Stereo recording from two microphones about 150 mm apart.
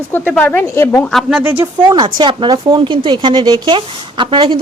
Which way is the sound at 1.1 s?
5° right (ahead or behind).